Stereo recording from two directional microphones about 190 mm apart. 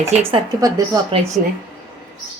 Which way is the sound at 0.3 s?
30° right (ahead or behind).